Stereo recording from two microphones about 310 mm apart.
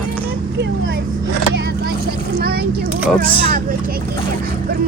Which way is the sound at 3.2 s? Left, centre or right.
Right.